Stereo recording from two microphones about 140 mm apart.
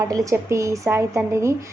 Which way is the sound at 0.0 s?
25° right (ahead or behind).